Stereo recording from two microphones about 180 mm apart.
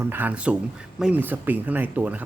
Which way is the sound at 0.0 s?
10° right (ahead or behind).